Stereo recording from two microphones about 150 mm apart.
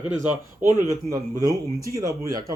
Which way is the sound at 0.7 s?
20° right (ahead or behind).